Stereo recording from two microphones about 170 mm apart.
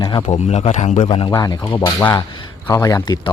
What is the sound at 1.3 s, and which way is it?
Speech, 25° left (ahead or behind).